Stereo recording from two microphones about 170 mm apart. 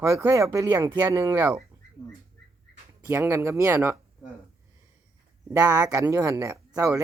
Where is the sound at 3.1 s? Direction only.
15° right (ahead or behind).